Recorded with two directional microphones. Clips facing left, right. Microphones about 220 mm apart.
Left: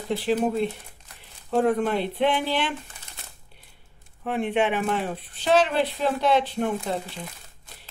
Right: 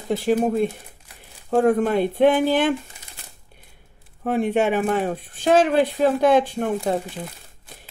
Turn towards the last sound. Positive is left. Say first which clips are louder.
# right 5 dB
turn(degrees=-45)  # may be behind; listen again after turning